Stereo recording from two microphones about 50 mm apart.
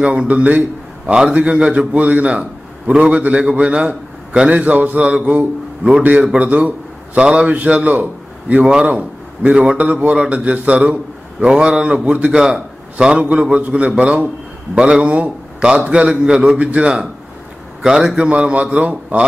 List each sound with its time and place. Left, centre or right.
0.0 s a man's voice: right
12.3 s a man's voice: centre
18.3 s a man's voice: right